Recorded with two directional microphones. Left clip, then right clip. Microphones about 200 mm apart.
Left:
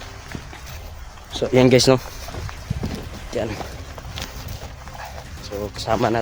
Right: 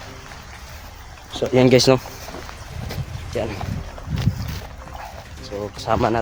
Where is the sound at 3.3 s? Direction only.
5° left (ahead or behind).